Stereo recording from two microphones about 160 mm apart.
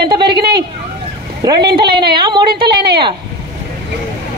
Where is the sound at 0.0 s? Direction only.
30° right (ahead or behind).